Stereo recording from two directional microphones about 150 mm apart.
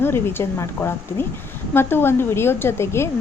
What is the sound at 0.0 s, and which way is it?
A woman's voice, 15° left (ahead or behind).